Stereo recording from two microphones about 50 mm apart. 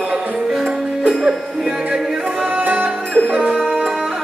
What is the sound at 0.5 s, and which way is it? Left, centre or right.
Music, centre.